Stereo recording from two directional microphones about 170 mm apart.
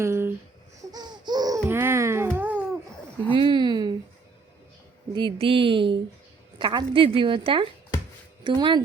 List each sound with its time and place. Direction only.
0.0 s babbling: 15° right (ahead or behind)
3.3 s a sound: 30° right (ahead or behind)
5.1 s a woman's voice: 30° right (ahead or behind)